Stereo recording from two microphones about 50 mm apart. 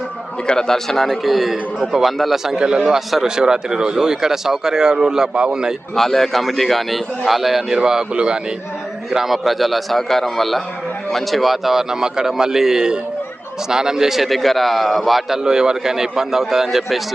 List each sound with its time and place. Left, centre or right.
0.4 s a man's voice: centre
2.8 s a man's voice: centre
6.0 s a man's voice: centre
8.1 s a man's voice: centre
9.0 s a man's voice: centre
15.4 s speech: centre